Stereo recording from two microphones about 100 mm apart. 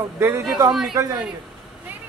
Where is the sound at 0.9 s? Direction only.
40° right (ahead or behind).